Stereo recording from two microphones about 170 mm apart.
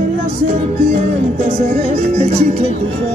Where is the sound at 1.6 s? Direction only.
40° right (ahead or behind).